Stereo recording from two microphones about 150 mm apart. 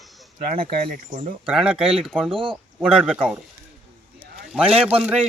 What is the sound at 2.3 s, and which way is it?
Speech, 35° right (ahead or behind).